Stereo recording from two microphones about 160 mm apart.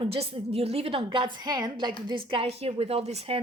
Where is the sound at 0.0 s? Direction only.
40° right (ahead or behind).